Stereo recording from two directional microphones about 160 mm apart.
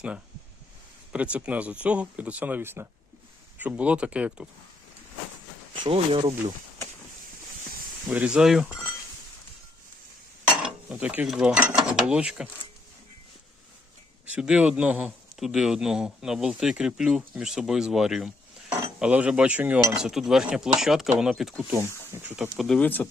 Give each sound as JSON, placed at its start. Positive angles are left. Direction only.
{"t": 1.1, "sound": "speech", "side_deg": -10}
{"t": 5.8, "sound": "speech", "side_deg": -35}
{"t": 8.0, "sound": "speech", "side_deg": -10}
{"t": 10.6, "sound": "mechanisms", "side_deg": -10}
{"t": 14.3, "sound": "a man's voice", "side_deg": -5}
{"t": 21.8, "sound": "speech", "side_deg": -15}
{"t": 22.4, "sound": "a man's voice", "side_deg": 0}